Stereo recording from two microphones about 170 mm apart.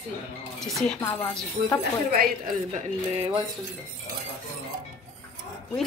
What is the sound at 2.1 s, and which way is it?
Speech, 55° right (ahead or behind).